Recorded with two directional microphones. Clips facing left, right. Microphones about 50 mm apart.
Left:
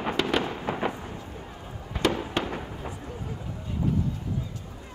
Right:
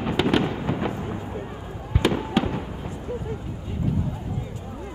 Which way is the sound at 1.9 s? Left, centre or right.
Centre.